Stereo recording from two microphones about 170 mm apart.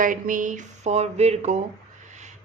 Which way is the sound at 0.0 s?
50° right (ahead or behind).